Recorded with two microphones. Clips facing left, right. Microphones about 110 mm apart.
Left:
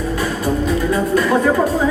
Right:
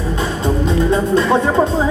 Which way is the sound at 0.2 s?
25° right (ahead or behind).